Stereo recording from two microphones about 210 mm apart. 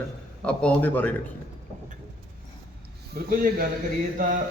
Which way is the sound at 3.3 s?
40° right (ahead or behind).